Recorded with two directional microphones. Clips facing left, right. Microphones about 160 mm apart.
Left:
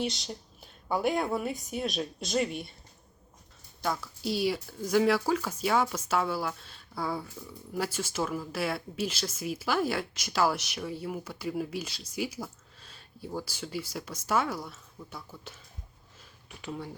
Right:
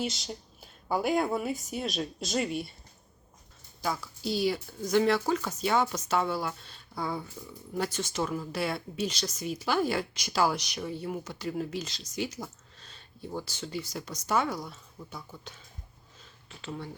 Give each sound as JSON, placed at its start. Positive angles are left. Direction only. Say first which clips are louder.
{"t": 0.0, "sound": "speech", "louder": "left 1 dB", "side_deg": -5}
{"t": 3.8, "sound": "speech", "louder": "left 1 dB", "side_deg": 0}
{"t": 16.2, "sound": "a sound", "louder": "left 1 dB", "side_deg": 15}